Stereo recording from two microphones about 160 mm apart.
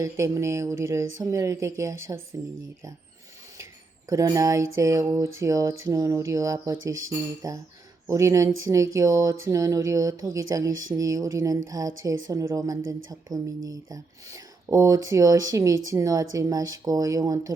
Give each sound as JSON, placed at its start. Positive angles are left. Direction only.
{"t": 0.0, "sound": "speech", "side_deg": -20}
{"t": 4.1, "sound": "speech", "side_deg": -20}